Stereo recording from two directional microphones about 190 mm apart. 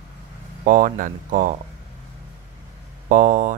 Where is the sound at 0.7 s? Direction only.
45° right (ahead or behind).